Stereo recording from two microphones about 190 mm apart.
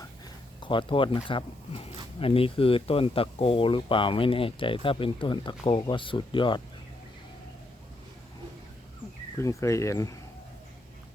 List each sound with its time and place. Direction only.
0.6 s speech: 25° left (ahead or behind)
9.4 s speech: 15° left (ahead or behind)